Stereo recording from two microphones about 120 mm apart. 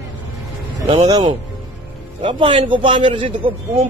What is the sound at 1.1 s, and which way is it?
A man's voice, 35° right (ahead or behind).